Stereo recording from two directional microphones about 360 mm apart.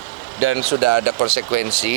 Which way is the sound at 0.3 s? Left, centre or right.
Right.